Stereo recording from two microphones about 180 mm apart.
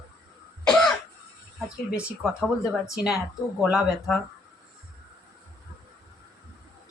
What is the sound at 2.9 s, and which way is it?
Speech, 5° right (ahead or behind).